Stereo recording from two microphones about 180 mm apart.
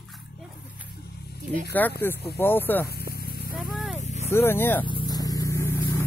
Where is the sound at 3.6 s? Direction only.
Centre (ahead or behind).